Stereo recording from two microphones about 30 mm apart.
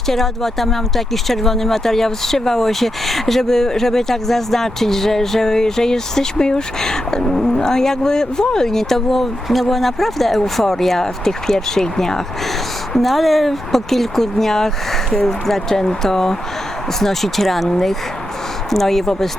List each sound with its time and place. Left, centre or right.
0.1 s speech: centre
12.9 s speech: centre
15.7 s speech: left; by 17.7 s centre
17.7 s speech: centre